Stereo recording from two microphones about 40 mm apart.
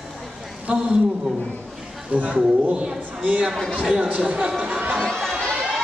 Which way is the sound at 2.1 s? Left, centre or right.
Right.